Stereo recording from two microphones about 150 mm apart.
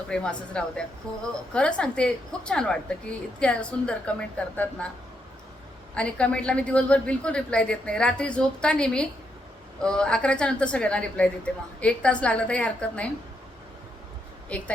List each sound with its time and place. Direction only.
0.1 s a woman's voice: 5° left (ahead or behind)
5.9 s a woman's voice: 10° left (ahead or behind)
14.5 s a woman's voice: 10° left (ahead or behind)